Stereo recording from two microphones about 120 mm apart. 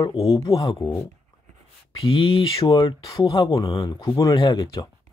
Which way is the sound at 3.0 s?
30° left (ahead or behind).